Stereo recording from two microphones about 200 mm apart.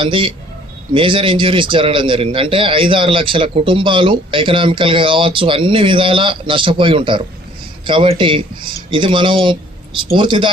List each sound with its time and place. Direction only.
0.0 s a man's voice: 25° right (ahead or behind)